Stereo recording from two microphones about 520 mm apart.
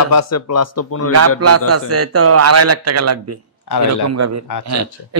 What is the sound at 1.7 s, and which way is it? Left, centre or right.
A man's voice, right.